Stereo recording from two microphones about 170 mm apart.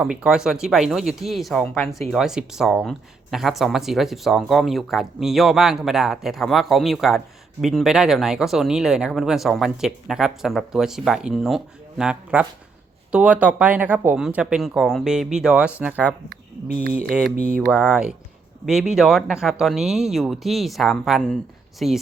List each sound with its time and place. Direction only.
0.0 s speech: 5° right (ahead or behind)
16.3 s speech: 60° right (ahead or behind)
17.1 s speech: 5° right (ahead or behind)